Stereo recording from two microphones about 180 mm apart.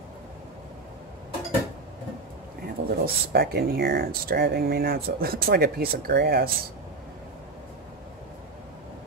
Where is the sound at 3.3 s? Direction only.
60° right (ahead or behind).